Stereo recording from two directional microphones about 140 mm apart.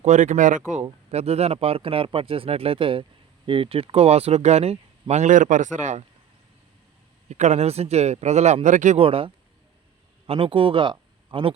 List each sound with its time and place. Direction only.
0.0 s speech: 60° right (ahead or behind)
1.1 s speech: 50° right (ahead or behind)
7.3 s speech: 55° right (ahead or behind)
9.0 s speech: 40° right (ahead or behind)